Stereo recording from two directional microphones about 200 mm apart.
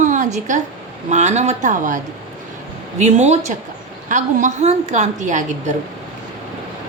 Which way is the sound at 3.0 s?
35° right (ahead or behind).